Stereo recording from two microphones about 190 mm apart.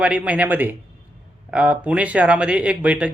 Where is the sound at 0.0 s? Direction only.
5° right (ahead or behind).